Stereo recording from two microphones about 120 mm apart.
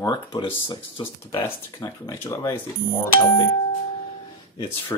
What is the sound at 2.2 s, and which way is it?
Speech, 30° left (ahead or behind).